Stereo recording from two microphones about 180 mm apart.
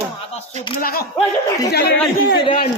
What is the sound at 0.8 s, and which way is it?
Speech, 55° left (ahead or behind).